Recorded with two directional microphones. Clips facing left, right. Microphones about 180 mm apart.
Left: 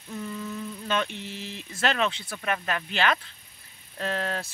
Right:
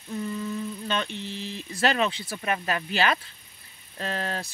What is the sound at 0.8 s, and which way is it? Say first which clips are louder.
Speech: left 5 dB; 5° left (ahead or behind).